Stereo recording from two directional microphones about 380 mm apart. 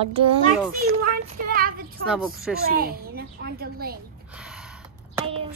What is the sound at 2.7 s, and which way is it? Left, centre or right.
A child's voice, right.